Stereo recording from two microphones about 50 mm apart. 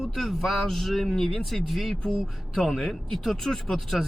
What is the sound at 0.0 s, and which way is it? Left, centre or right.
A man's voice, centre.